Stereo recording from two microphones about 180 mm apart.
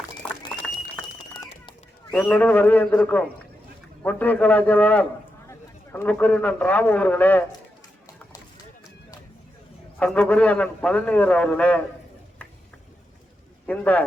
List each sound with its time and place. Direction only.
1.4 s a sound: 20° left (ahead or behind)
2.1 s a man's voice: 10° left (ahead or behind)
10.0 s a man's voice: 5° left (ahead or behind)
13.7 s a man's voice: 10° left (ahead or behind)